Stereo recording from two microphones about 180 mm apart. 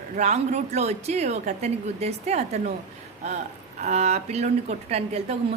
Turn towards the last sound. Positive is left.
turn(degrees=-35)  # may be behind; listen again after turning